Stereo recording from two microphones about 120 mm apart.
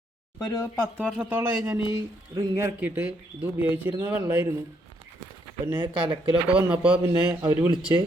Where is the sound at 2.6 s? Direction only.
15° right (ahead or behind).